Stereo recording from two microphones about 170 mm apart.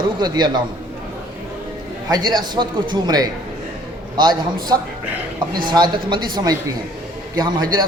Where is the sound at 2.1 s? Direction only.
25° right (ahead or behind).